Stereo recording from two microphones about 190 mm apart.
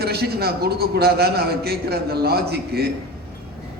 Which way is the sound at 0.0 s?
55° right (ahead or behind).